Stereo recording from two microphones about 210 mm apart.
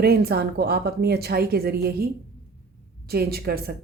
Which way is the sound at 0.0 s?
50° right (ahead or behind).